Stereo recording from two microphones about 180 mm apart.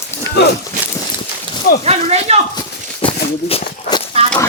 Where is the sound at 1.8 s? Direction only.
35° right (ahead or behind).